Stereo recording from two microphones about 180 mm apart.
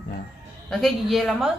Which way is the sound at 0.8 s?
Centre (ahead or behind).